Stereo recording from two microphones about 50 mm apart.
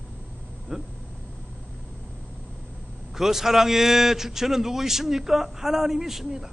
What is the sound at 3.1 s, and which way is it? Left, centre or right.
A man's voice, centre.